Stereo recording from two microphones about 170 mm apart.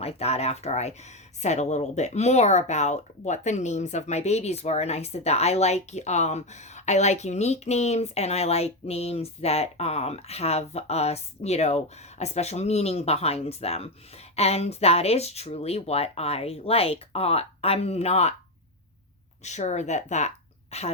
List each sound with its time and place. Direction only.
0.0 s speech: 35° left (ahead or behind)
19.4 s speech: 45° left (ahead or behind)